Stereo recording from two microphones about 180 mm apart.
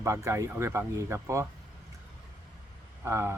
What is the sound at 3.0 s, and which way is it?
Speech, 15° right (ahead or behind).